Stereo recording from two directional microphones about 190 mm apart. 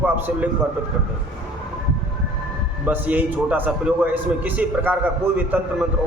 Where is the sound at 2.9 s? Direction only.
10° right (ahead or behind).